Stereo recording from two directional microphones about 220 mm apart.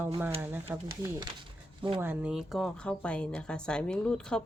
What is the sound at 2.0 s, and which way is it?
Speech, 5° right (ahead or behind).